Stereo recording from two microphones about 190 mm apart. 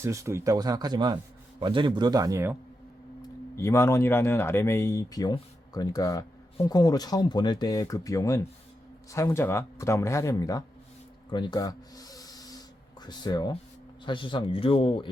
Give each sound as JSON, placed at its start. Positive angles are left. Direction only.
{"t": 0.0, "sound": "a man's voice", "side_deg": -15}
{"t": 3.2, "sound": "speech", "side_deg": 15}
{"t": 11.3, "sound": "a sound", "side_deg": 25}
{"t": 14.0, "sound": "a man's voice", "side_deg": 25}